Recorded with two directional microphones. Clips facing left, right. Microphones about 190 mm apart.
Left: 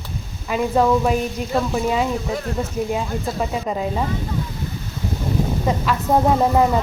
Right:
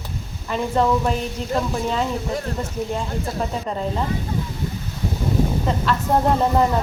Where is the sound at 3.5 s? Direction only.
10° left (ahead or behind).